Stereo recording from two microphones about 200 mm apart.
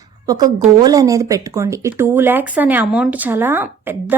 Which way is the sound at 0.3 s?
20° right (ahead or behind).